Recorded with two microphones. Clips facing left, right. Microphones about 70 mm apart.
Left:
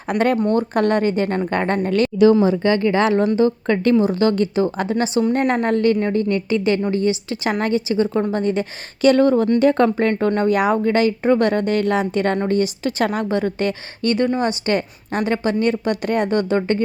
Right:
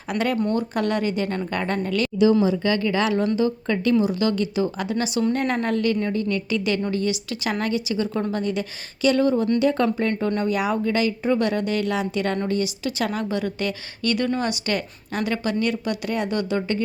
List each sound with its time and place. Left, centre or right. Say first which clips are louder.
0.1 s a woman's voice: left 5 dB; left